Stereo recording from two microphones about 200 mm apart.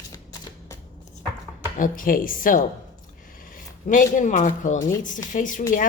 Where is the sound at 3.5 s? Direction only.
40° left (ahead or behind).